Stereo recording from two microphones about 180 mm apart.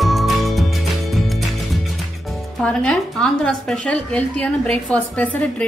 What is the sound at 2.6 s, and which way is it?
A woman's voice, 5° left (ahead or behind).